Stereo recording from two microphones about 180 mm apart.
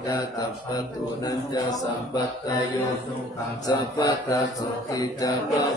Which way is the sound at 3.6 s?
20° left (ahead or behind).